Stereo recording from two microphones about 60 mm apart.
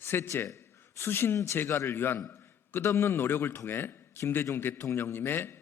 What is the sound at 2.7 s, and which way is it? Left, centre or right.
A man's voice, left.